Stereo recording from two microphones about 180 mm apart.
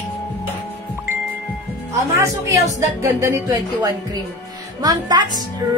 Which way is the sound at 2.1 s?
15° right (ahead or behind).